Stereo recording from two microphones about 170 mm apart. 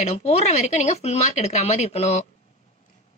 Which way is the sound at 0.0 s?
40° left (ahead or behind).